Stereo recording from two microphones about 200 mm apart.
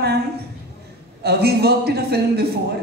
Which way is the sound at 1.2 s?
55° right (ahead or behind).